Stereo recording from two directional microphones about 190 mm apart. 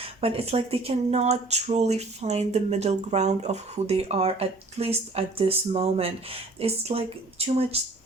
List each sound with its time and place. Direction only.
0.0 s speech: 30° right (ahead or behind)